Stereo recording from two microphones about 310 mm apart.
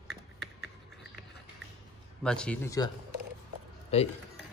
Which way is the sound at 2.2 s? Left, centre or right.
Centre.